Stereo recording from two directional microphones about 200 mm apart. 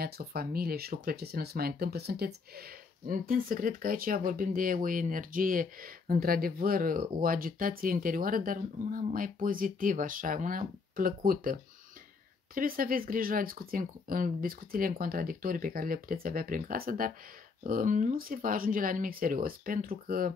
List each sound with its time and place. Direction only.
0.0 s speech: 50° right (ahead or behind)
12.5 s speech: 45° right (ahead or behind)